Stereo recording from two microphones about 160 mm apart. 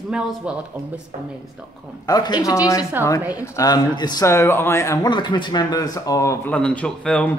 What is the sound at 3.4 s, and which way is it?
Speech, 20° left (ahead or behind).